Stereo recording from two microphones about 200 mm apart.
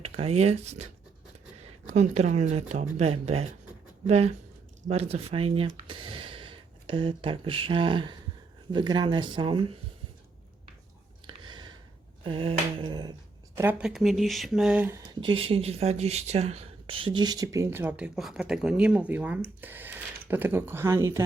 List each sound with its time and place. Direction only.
0.0 s speech: 30° right (ahead or behind)
1.9 s speech: 35° right (ahead or behind)
11.3 s a sound: 20° right (ahead or behind)
12.2 s speech: 25° right (ahead or behind)
13.6 s speech: 5° right (ahead or behind)
15.2 s speech: 25° right (ahead or behind)